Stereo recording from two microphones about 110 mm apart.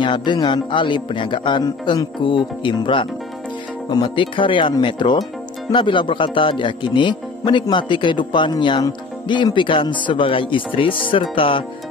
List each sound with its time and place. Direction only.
0.0 s music: 45° left (ahead or behind)
1.6 s speech: 35° left (ahead or behind)
2.2 s music: 45° left (ahead or behind)